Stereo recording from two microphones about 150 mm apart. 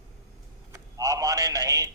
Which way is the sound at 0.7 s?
20° right (ahead or behind).